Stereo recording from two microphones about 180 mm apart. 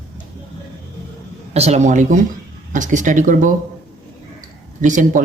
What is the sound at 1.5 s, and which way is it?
Speech, 35° right (ahead or behind).